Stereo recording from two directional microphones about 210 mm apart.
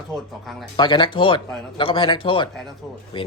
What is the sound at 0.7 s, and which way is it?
Speech, 20° left (ahead or behind).